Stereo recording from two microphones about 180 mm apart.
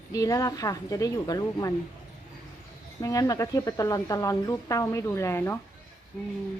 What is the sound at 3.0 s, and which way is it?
Speech, 20° left (ahead or behind).